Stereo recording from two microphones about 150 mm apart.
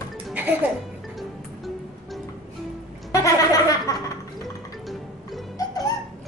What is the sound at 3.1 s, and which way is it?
Chuckle, 20° left (ahead or behind).